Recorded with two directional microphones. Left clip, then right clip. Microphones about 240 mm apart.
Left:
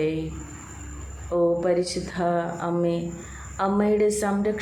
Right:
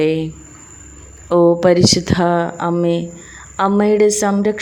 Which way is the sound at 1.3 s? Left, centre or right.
Right.